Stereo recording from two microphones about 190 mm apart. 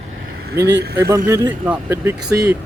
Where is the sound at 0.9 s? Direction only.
15° right (ahead or behind).